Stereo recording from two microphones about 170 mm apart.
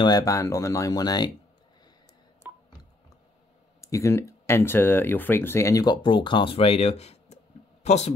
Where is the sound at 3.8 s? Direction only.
15° left (ahead or behind).